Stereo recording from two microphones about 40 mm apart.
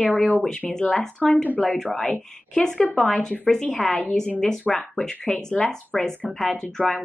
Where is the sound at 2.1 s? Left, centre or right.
Left.